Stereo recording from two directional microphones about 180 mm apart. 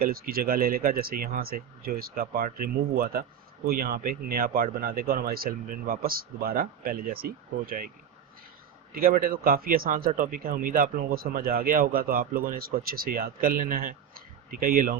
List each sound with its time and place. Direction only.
0.0 s speech: 55° right (ahead or behind)
8.9 s speech: 55° right (ahead or behind)